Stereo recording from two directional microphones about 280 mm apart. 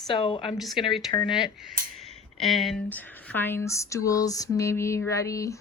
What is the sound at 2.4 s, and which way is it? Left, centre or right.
Speech, centre.